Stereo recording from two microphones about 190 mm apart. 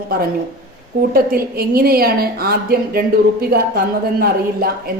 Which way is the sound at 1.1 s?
50° right (ahead or behind).